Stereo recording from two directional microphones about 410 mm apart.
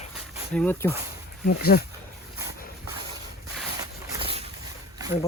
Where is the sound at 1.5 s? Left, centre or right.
Left.